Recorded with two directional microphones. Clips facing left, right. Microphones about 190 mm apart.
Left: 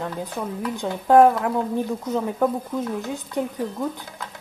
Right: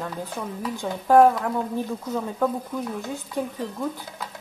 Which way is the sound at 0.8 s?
20° left (ahead or behind).